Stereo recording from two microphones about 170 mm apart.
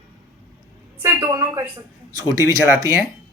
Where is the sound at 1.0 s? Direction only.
15° right (ahead or behind).